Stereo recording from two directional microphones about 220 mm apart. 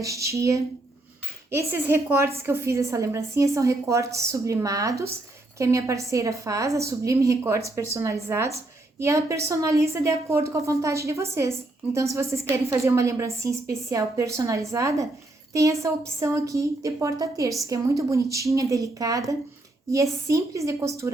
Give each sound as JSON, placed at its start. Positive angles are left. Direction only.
{"t": 0.0, "sound": "a woman's voice", "side_deg": -15}